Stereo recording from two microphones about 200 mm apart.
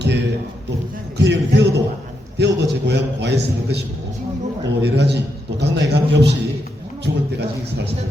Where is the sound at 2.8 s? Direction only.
60° right (ahead or behind).